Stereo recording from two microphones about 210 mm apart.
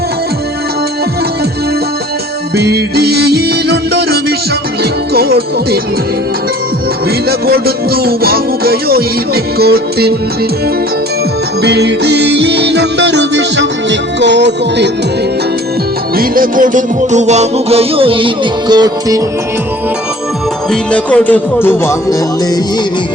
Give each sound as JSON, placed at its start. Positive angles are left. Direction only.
{"t": 2.6, "sound": "music", "side_deg": -50}
{"t": 7.3, "sound": "music", "side_deg": -45}
{"t": 11.6, "sound": "music", "side_deg": -55}
{"t": 16.1, "sound": "music", "side_deg": -40}
{"t": 20.7, "sound": "music", "side_deg": 5}